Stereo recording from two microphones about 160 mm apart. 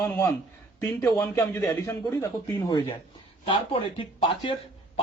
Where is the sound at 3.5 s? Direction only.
35° left (ahead or behind).